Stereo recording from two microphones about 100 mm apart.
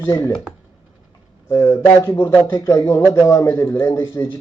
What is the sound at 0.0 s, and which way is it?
Speech, 25° left (ahead or behind).